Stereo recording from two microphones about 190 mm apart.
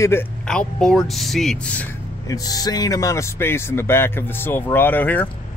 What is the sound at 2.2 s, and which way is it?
Speech, 20° left (ahead or behind).